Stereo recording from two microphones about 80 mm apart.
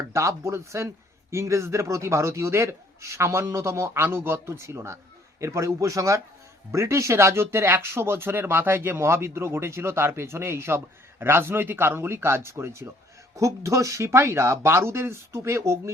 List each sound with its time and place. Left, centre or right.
0.1 s speech: right